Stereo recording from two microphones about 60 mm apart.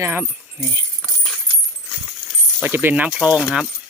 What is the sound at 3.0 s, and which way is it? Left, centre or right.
Speech, centre.